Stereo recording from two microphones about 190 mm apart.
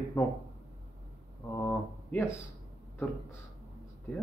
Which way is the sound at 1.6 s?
15° left (ahead or behind).